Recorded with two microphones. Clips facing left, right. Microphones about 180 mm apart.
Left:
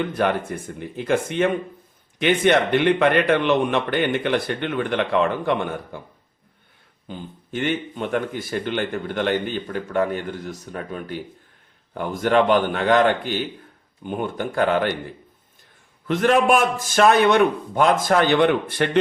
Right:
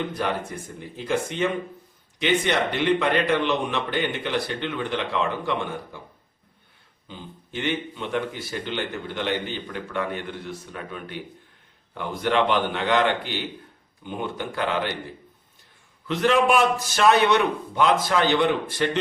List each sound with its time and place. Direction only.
0.1 s a man's voice: 55° left (ahead or behind)
7.1 s speech: 50° left (ahead or behind)
16.0 s speech: 50° left (ahead or behind)